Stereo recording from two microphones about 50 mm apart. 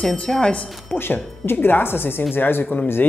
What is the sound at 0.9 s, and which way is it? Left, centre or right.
A woman's voice, left.